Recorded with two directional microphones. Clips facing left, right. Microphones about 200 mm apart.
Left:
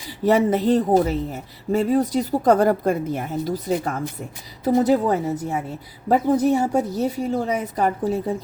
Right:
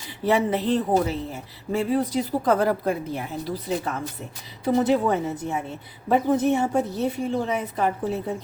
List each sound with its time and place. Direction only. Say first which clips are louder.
0.3 s a woman's voice: left 4 dB; 45° left (ahead or behind)